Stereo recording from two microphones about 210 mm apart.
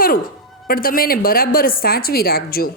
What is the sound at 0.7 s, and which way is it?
Speech, 45° left (ahead or behind).